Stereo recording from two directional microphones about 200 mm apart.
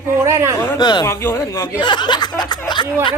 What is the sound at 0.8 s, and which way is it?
A man's voice, 20° left (ahead or behind).